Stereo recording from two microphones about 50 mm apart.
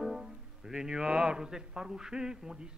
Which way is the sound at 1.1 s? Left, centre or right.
Centre.